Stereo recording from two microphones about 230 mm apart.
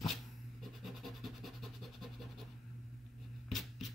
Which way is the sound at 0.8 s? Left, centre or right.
Centre.